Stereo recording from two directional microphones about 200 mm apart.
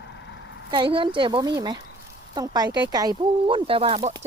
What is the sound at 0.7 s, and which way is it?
Speech, 25° right (ahead or behind).